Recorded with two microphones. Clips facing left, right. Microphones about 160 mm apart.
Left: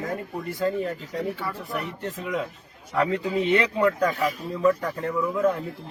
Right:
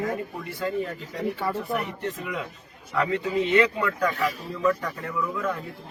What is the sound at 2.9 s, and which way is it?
Speech, 35° left (ahead or behind).